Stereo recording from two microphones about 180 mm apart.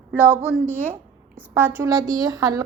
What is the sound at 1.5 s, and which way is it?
A woman's voice, 10° right (ahead or behind).